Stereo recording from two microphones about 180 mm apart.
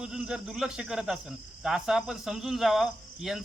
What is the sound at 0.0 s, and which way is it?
Speech, 5° right (ahead or behind).